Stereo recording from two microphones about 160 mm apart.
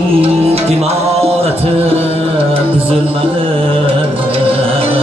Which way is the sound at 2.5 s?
35° right (ahead or behind).